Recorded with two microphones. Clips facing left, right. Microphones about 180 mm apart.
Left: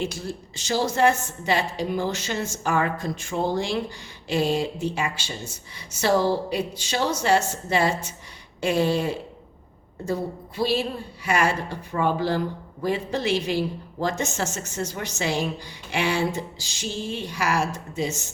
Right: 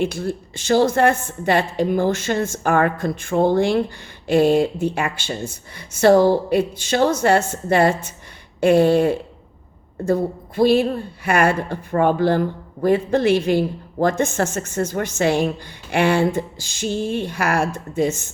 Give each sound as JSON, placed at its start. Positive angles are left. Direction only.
{"t": 0.0, "sound": "a woman's voice", "side_deg": -60}